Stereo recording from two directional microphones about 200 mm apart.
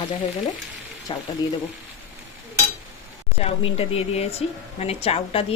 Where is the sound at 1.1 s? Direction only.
25° left (ahead or behind).